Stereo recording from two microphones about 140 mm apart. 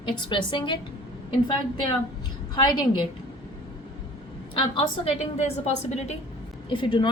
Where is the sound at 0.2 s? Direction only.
35° left (ahead or behind).